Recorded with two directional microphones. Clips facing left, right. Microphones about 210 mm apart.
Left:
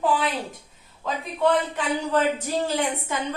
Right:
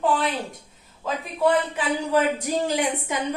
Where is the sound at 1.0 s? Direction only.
5° right (ahead or behind).